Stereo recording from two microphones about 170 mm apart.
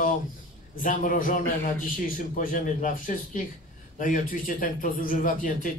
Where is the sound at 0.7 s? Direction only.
50° left (ahead or behind).